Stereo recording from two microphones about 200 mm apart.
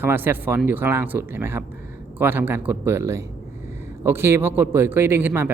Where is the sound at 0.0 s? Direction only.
10° right (ahead or behind).